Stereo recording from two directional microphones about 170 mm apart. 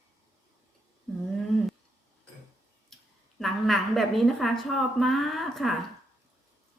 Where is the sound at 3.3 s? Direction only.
Centre (ahead or behind).